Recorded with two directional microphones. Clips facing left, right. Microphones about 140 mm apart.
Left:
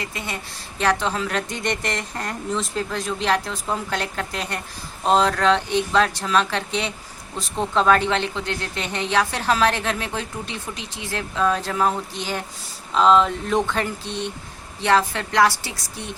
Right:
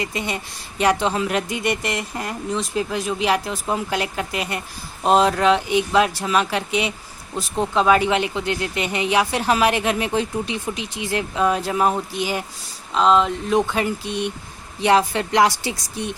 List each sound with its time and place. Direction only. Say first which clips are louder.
0.0 s a woman's voice: right 5 dB; 20° right (ahead or behind)